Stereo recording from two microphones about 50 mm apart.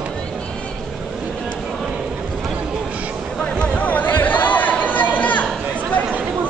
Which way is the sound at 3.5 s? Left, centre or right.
Left.